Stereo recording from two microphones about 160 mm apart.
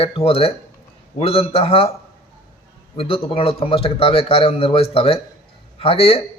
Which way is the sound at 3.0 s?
35° left (ahead or behind).